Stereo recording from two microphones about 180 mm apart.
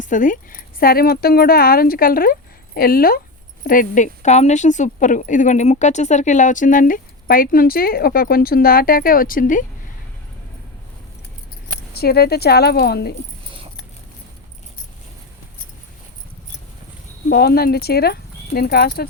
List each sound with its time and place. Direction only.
0.0 s speech: 45° left (ahead or behind)
11.9 s speech: 60° left (ahead or behind)
17.2 s speech: 60° left (ahead or behind)